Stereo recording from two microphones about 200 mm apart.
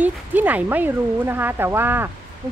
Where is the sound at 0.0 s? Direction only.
10° right (ahead or behind).